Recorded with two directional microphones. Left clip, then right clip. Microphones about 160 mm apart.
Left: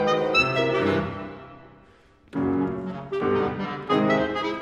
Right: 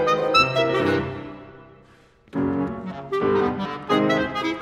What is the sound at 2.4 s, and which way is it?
Music, 30° right (ahead or behind).